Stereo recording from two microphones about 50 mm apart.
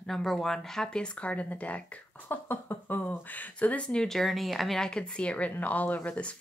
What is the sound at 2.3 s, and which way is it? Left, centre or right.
Speech, left.